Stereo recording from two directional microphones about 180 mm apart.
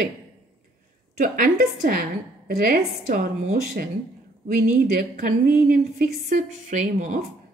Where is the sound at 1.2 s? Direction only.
50° right (ahead or behind).